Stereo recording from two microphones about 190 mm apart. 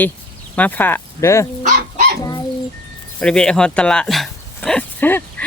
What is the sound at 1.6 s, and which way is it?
Dog, 40° right (ahead or behind).